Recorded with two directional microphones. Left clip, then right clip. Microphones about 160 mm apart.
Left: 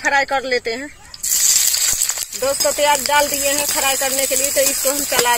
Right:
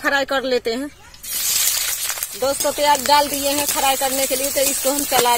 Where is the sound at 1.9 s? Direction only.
10° left (ahead or behind).